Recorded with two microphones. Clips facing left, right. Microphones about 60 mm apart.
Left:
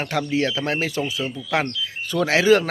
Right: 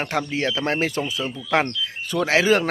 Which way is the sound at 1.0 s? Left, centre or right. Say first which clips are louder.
Left 1 dB; centre.